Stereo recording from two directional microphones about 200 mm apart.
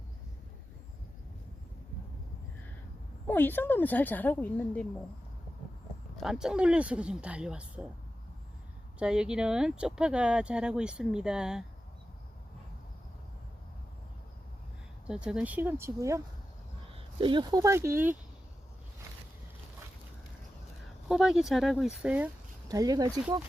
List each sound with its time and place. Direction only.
3.2 s speech: 10° left (ahead or behind)
6.1 s speech: centre (ahead or behind)
9.0 s speech: 5° right (ahead or behind)
15.0 s speech: 5° right (ahead or behind)
16.9 s speech: 25° right (ahead or behind)
21.1 s speech: 5° right (ahead or behind)
22.7 s speech: 20° right (ahead or behind)